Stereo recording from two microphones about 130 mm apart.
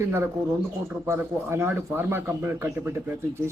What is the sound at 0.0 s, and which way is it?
Speech, 20° right (ahead or behind).